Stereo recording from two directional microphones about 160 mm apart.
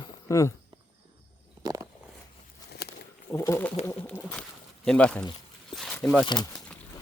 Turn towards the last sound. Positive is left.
turn(degrees=5)  # may be behind; listen again after turning